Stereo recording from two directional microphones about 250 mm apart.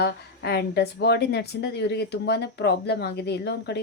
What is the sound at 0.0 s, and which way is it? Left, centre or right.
Speech, left.